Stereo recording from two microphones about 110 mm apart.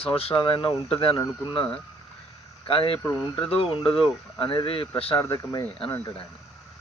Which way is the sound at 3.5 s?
60° left (ahead or behind).